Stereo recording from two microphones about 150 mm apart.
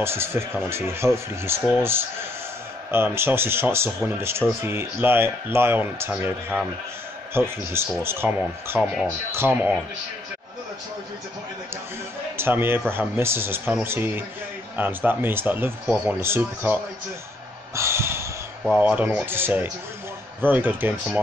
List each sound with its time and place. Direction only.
0.0 s speech: 15° right (ahead or behind)
12.4 s speech: 15° right (ahead or behind)
17.7 s a sound: 20° right (ahead or behind)
18.7 s speech: 10° right (ahead or behind)